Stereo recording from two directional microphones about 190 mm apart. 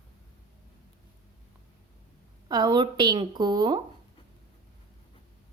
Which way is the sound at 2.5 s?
20° right (ahead or behind).